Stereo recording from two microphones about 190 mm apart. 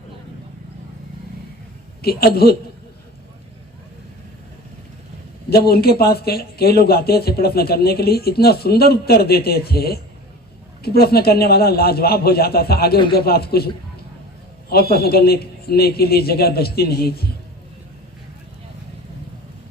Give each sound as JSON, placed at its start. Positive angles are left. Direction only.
{"t": 2.0, "sound": "a man's voice", "side_deg": 55}
{"t": 5.5, "sound": "a man's voice", "side_deg": 55}
{"t": 14.7, "sound": "a man's voice", "side_deg": 55}